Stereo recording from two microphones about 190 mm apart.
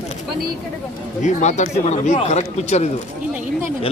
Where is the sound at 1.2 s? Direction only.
40° left (ahead or behind).